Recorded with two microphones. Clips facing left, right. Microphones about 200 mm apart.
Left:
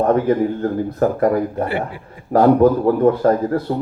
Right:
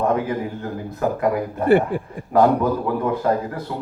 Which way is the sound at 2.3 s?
50° left (ahead or behind).